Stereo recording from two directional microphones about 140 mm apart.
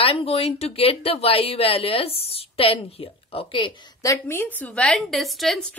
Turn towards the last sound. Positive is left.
turn(degrees=0)  # may be behind; listen again after turning